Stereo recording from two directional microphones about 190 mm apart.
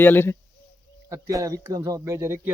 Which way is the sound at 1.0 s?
15° right (ahead or behind).